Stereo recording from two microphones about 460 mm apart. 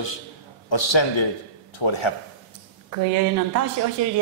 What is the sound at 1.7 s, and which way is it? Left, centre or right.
Speech, left.